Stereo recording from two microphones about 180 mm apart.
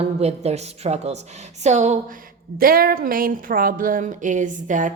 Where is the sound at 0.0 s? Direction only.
35° right (ahead or behind).